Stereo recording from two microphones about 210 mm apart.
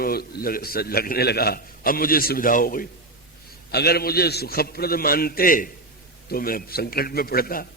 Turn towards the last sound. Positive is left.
turn(degrees=45)  # may be behind; listen again after turning